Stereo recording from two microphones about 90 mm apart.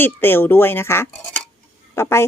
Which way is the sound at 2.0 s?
30° left (ahead or behind).